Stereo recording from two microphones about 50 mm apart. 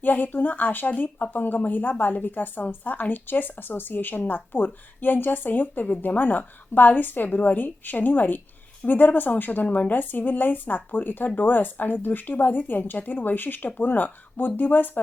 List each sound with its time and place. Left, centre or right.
0.0 s speech: left